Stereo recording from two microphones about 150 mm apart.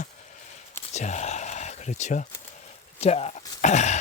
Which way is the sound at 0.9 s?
50° left (ahead or behind).